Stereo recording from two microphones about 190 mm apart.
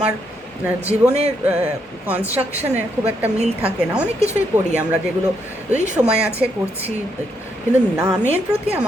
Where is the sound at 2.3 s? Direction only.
35° right (ahead or behind).